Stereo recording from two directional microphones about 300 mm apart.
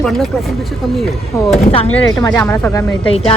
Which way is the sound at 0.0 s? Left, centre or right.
Centre.